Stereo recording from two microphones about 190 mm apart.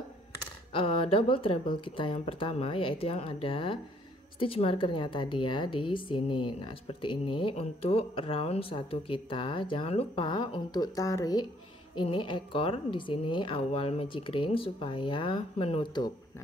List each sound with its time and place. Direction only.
0.7 s a woman's voice: 30° left (ahead or behind)